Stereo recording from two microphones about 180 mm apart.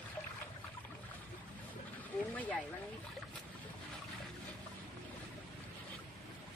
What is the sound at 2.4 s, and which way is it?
Speech, 10° left (ahead or behind).